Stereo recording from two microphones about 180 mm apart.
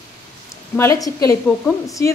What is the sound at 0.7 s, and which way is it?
Speech, 15° left (ahead or behind).